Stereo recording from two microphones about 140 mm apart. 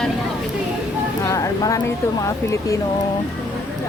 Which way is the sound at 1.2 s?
25° left (ahead or behind).